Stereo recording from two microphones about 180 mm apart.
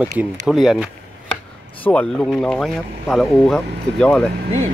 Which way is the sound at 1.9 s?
5° left (ahead or behind).